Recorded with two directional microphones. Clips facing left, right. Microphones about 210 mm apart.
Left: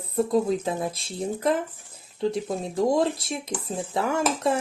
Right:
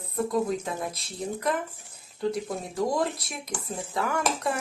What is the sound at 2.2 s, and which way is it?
Speech, 25° left (ahead or behind).